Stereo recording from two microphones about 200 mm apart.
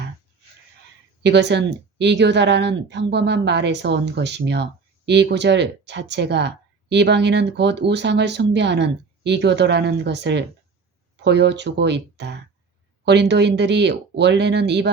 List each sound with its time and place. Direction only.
1.2 s speech: 60° right (ahead or behind)